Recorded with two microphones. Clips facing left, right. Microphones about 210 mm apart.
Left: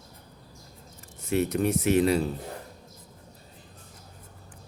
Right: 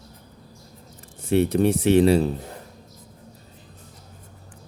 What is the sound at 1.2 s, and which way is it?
Speech, 30° right (ahead or behind).